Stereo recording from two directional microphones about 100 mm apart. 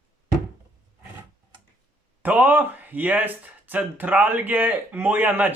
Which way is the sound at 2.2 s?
15° right (ahead or behind).